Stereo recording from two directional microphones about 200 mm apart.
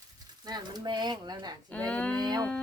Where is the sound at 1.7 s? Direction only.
5° left (ahead or behind).